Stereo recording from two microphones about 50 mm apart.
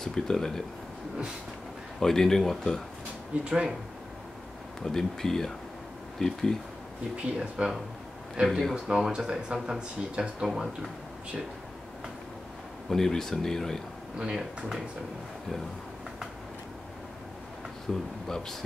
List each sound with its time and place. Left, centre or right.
0.0 s speech: centre
2.0 s speech: centre
3.3 s speech: right
4.8 s speech: centre
7.3 s speech: centre
8.7 s speech: centre
12.9 s speech: centre
14.1 s speech: centre
17.9 s speech: centre